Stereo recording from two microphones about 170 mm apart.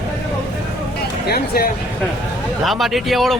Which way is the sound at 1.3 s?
65° left (ahead or behind).